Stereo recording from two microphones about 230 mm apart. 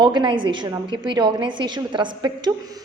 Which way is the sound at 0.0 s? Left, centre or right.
Centre.